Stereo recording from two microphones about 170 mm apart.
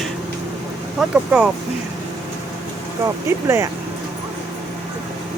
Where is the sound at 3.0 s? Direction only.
15° right (ahead or behind).